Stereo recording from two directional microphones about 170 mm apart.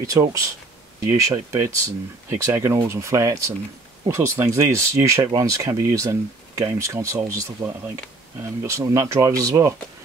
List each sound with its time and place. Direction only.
0.0 s speech: 20° right (ahead or behind)